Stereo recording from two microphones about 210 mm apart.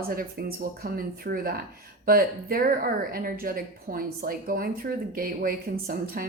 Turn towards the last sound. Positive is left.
turn(degrees=-45)  # may be behind; listen again after turning